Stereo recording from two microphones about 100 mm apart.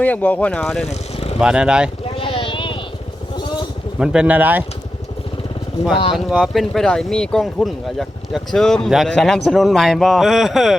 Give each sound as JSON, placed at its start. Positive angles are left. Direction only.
{"t": 0.0, "sound": "speech", "side_deg": 15}
{"t": 0.9, "sound": "vehicle", "side_deg": 90}
{"t": 1.4, "sound": "speech", "side_deg": -10}
{"t": 2.1, "sound": "a sound", "side_deg": 60}
{"t": 4.0, "sound": "speech", "side_deg": -10}
{"t": 6.1, "sound": "speech", "side_deg": 0}